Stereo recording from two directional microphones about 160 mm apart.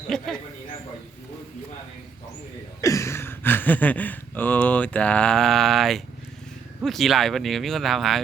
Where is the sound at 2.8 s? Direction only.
20° left (ahead or behind).